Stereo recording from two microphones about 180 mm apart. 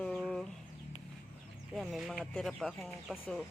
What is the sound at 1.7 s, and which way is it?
Speech, centre (ahead or behind).